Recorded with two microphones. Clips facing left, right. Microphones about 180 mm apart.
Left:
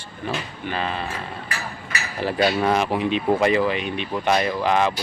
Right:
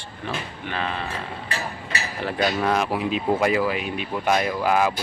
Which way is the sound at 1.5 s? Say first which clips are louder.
Right 1 dB; 30° right (ahead or behind).